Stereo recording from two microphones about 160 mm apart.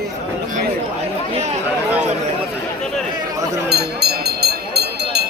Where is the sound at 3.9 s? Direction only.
90° right.